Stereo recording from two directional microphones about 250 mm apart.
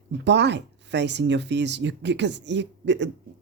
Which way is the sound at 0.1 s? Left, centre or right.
Right.